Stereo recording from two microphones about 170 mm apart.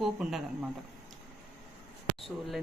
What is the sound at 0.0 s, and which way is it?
Speech, centre (ahead or behind).